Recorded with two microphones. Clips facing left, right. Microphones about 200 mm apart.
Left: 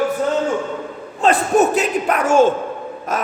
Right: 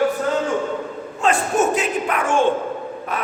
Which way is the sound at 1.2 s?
35° left (ahead or behind).